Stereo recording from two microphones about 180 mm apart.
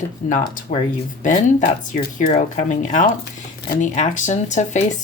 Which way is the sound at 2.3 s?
45° left (ahead or behind).